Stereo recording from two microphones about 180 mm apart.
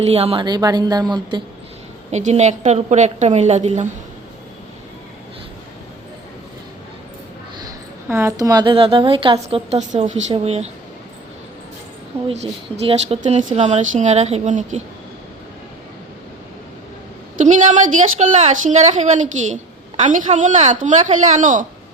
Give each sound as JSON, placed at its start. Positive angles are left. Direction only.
{"t": 0.0, "sound": "a woman's voice", "side_deg": -35}
{"t": 2.1, "sound": "speech", "side_deg": -40}
{"t": 8.0, "sound": "a woman's voice", "side_deg": -15}
{"t": 12.7, "sound": "speech", "side_deg": -35}
{"t": 17.4, "sound": "a woman's voice", "side_deg": -45}